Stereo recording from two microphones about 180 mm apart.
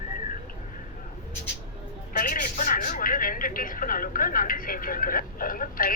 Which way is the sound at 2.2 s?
50° left (ahead or behind).